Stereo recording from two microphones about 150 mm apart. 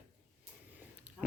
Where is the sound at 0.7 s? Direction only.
10° right (ahead or behind).